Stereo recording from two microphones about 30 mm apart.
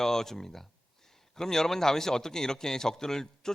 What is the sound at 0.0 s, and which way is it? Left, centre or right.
A man's voice, centre.